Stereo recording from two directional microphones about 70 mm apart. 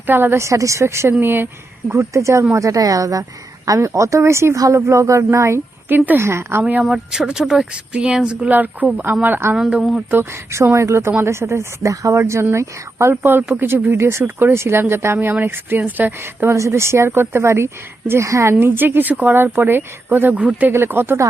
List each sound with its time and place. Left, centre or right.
0.0 s speech: right
1.2 s speech: right
1.9 s speech: right
5.9 s speech: right
6.6 s speech: right
6.8 s speech: centre; by 9.6 s right
9.6 s speech: centre
10.1 s speech: right
13.9 s speech: right
18.6 s speech: right
20.7 s speech: right